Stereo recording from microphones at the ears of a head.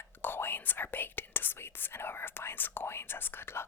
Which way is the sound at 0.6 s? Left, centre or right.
Left.